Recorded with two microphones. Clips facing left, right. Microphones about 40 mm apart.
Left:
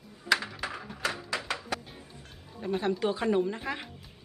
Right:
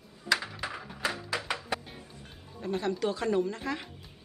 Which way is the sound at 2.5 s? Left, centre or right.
Centre.